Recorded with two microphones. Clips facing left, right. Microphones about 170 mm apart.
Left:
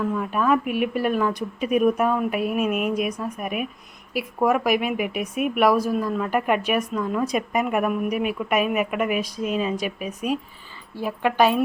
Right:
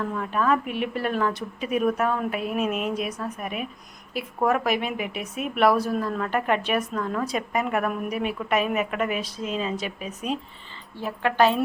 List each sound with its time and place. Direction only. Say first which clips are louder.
0.0 s speech: left 2 dB; 5° left (ahead or behind)